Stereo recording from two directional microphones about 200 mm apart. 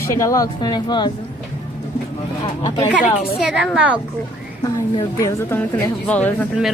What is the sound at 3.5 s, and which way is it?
Speech, 5° right (ahead or behind).